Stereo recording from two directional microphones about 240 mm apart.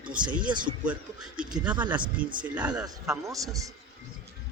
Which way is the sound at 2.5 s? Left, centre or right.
Centre.